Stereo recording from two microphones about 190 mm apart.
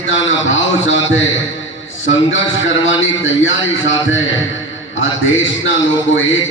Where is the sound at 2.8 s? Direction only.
90° left.